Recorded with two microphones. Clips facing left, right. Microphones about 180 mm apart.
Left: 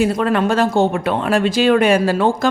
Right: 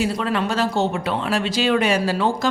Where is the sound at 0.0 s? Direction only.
50° left (ahead or behind).